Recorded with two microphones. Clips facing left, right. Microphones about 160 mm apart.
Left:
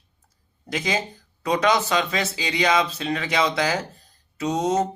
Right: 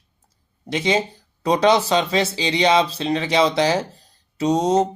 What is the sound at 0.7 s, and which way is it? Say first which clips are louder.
Speech: right 5 dB; 25° right (ahead or behind).